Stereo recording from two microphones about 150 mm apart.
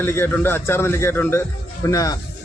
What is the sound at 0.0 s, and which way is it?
A man's voice, 15° left (ahead or behind).